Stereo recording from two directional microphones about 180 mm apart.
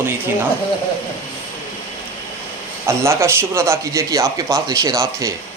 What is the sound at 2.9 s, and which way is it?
A man's voice, 15° right (ahead or behind).